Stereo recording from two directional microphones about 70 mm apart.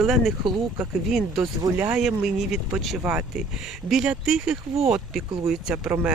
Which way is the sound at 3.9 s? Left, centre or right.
Centre.